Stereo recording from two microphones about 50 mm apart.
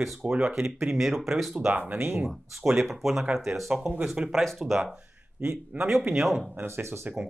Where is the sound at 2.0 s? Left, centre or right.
Right.